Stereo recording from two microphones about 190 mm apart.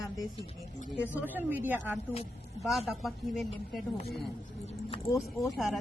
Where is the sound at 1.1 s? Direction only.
10° right (ahead or behind).